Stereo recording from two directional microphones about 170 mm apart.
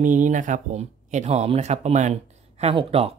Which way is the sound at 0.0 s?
50° right (ahead or behind).